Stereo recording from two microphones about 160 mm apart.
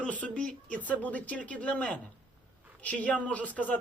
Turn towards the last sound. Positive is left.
turn(degrees=10)  # may be behind; listen again after turning